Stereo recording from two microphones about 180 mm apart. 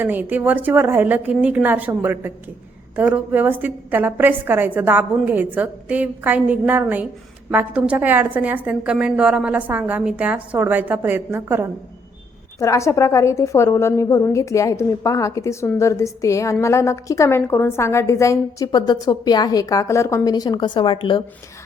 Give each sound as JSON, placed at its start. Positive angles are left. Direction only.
{"t": 0.0, "sound": "a woman's voice", "side_deg": -10}
{"t": 12.5, "sound": "a woman's voice", "side_deg": 15}